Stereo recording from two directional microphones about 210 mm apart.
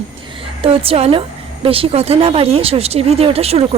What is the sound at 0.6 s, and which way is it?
Speech, 25° right (ahead or behind).